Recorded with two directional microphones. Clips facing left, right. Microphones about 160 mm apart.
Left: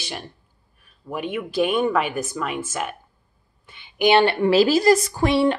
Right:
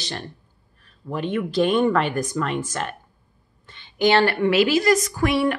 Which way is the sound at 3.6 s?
10° left (ahead or behind).